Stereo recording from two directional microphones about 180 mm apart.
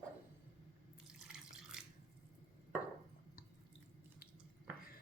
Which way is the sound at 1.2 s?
5° right (ahead or behind).